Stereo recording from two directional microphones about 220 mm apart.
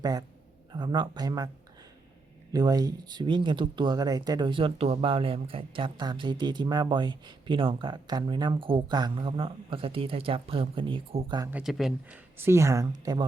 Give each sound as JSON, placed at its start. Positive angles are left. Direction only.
{"t": 0.0, "sound": "speech", "side_deg": -15}
{"t": 2.5, "sound": "speech", "side_deg": -15}
{"t": 11.5, "sound": "speech", "side_deg": 0}